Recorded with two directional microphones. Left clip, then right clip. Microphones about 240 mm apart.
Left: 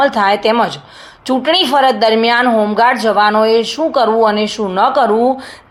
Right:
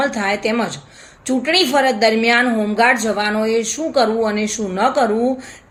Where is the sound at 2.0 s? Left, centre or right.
Centre.